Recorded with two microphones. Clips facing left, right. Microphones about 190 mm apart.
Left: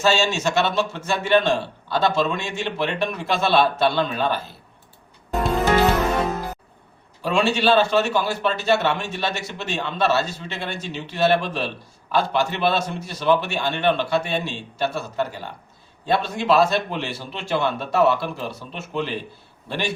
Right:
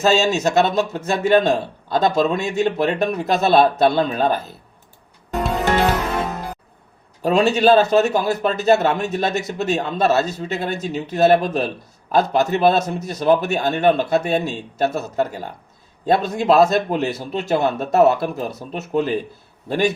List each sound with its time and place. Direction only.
0.0 s a man's voice: 40° right (ahead or behind)
7.2 s a man's voice: 40° right (ahead or behind)